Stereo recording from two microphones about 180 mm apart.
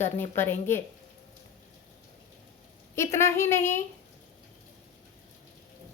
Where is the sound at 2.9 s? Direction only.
15° left (ahead or behind).